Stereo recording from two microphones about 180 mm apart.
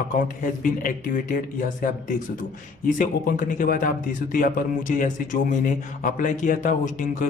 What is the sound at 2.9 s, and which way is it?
Speech, 50° left (ahead or behind).